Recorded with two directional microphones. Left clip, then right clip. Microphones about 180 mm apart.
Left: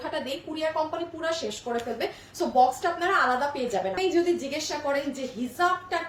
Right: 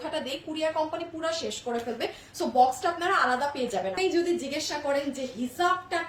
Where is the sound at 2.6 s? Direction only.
15° right (ahead or behind).